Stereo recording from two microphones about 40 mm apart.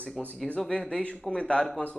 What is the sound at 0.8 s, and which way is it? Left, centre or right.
Speech, centre.